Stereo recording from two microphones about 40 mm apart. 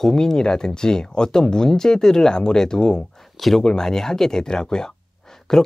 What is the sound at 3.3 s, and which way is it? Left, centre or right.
Speech, centre.